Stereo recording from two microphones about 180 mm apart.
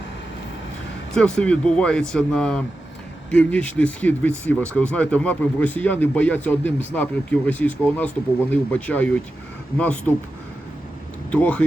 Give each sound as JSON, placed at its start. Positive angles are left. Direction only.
{"t": 1.1, "sound": "speech", "side_deg": 5}
{"t": 11.3, "sound": "speech", "side_deg": 5}